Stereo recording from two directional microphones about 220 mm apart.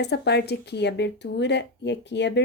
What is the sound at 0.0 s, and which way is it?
Speech, 50° left (ahead or behind).